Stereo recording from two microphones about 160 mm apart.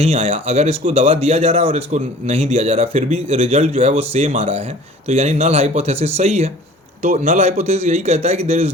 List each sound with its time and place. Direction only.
0.0 s speech: 40° right (ahead or behind)